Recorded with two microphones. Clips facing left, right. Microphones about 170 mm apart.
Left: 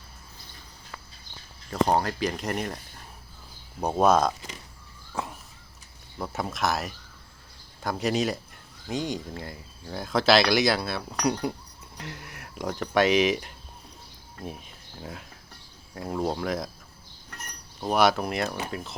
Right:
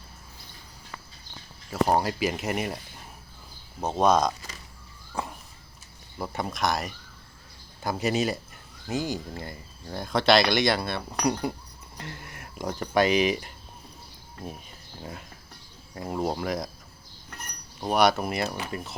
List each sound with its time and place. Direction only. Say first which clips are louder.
1.7 s speech: even; 10° right (ahead or behind)
3.8 s speech: left 1 dB; 10° left (ahead or behind)
5.1 s crow: even; centre (ahead or behind)
6.1 s speech: even; centre (ahead or behind)
16.0 s speech: even; 5° right (ahead or behind)
17.7 s speech: even; centre (ahead or behind)